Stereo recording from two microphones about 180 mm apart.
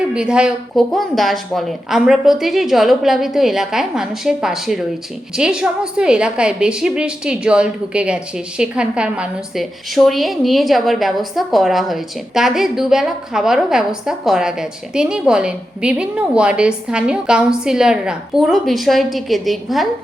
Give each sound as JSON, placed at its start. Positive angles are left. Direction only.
{"t": 0.1, "sound": "a woman's voice", "side_deg": -5}